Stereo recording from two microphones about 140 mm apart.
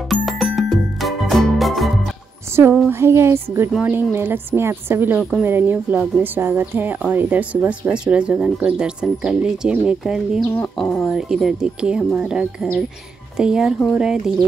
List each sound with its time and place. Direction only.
0.1 s music: centre (ahead or behind)
2.9 s a woman's voice: 20° right (ahead or behind)
10.5 s speech: 10° left (ahead or behind)
11.1 s speech: 5° right (ahead or behind)